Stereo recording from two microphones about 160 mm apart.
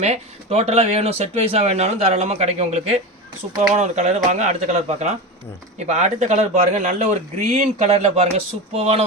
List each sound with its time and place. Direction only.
0.0 s a man's voice: 40° right (ahead or behind)